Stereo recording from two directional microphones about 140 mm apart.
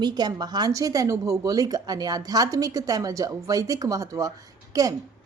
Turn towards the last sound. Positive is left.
turn(degrees=-25)  # may be behind; listen again after turning